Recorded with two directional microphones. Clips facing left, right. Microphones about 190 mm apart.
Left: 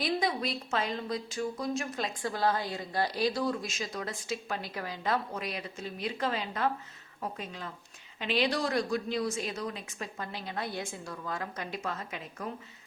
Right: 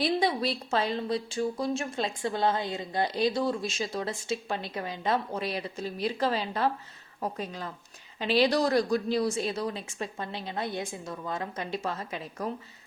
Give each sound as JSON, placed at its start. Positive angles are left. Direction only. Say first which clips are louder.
{"t": 0.0, "sound": "a woman's voice", "louder": "right 4 dB", "side_deg": -30}